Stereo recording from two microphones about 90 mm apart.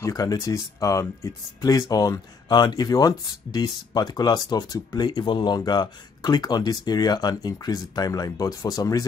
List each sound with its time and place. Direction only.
0.1 s speech: 45° left (ahead or behind)